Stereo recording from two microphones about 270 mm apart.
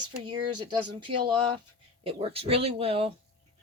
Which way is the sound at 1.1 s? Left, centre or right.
Right.